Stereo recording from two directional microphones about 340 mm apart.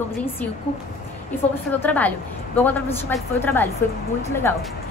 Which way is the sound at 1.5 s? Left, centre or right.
Centre.